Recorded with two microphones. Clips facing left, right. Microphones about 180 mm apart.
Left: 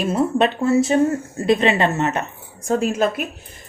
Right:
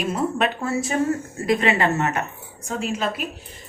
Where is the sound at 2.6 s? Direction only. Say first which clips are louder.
Left 7 dB; 45° left (ahead or behind).